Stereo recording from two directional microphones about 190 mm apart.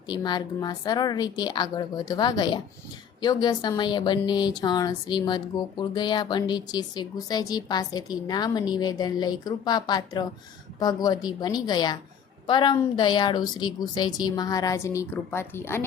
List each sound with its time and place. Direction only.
0.1 s speech: 20° left (ahead or behind)